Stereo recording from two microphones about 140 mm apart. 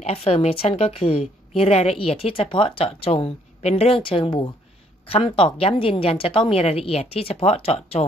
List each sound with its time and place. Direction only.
0.0 s a woman's voice: 45° left (ahead or behind)